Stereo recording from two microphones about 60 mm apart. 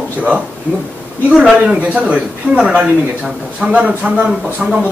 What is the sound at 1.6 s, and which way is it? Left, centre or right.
A man's voice, right.